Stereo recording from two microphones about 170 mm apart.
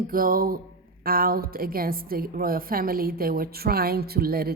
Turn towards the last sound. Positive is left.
turn(degrees=-65)  # may be behind; listen again after turning